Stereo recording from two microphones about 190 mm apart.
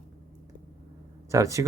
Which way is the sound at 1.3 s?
15° right (ahead or behind).